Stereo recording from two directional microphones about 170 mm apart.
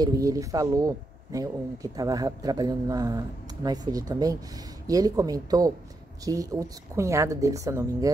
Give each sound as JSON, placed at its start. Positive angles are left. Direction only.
{"t": 0.0, "sound": "speech", "side_deg": -20}